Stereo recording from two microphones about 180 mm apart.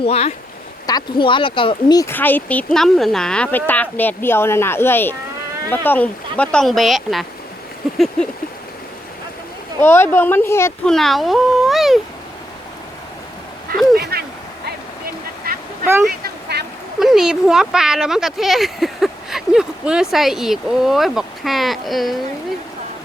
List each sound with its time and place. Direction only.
0.0 s speech: 35° left (ahead or behind); by 8.3 s centre (ahead or behind)
9.8 s speech: 10° left (ahead or behind)
10.9 s speech: centre (ahead or behind)
13.9 s a sound: 60° right (ahead or behind)
15.5 s quack: 55° right (ahead or behind)
16.0 s a sound: 60° right (ahead or behind)
17.0 s speech: 5° right (ahead or behind)